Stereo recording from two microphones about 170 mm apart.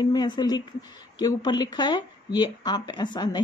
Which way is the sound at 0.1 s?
25° left (ahead or behind).